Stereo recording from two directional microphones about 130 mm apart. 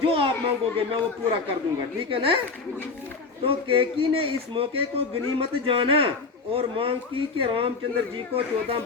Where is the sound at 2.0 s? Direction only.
45° right (ahead or behind).